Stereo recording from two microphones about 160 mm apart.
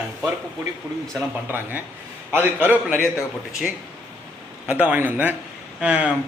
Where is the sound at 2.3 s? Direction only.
15° right (ahead or behind).